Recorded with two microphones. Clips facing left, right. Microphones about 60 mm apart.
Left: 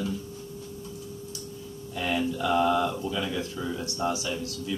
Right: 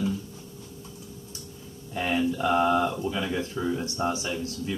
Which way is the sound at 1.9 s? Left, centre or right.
Right.